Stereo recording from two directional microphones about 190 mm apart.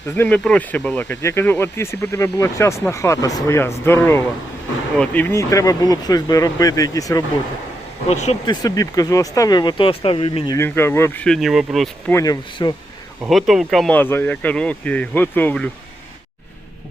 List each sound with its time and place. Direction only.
0.2 s speech: 5° left (ahead or behind)
8.1 s speech: 40° left (ahead or behind)
8.4 s speech: 20° left (ahead or behind)
10.6 s speech: 15° left (ahead or behind)
12.1 s speech: 20° left (ahead or behind)
13.2 s speech: centre (ahead or behind)